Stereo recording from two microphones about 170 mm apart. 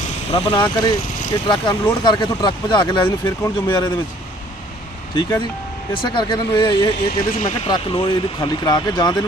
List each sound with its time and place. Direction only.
0.4 s speech: 25° left (ahead or behind)
5.1 s speech: 25° left (ahead or behind)
7.3 s speech: 50° left (ahead or behind)
7.7 s speech: 30° left (ahead or behind)